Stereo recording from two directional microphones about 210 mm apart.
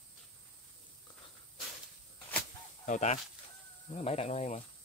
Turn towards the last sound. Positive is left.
turn(degrees=30)  # may be behind; listen again after turning